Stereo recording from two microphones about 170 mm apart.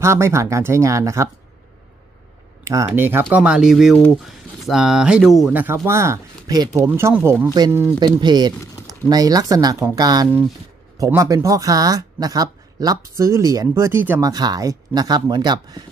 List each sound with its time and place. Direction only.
0.0 s speech: 15° right (ahead or behind)
2.6 s speech: 15° right (ahead or behind); by 5.6 s centre (ahead or behind)
5.9 s speech: 15° right (ahead or behind)
6.9 s speech: 10° right (ahead or behind)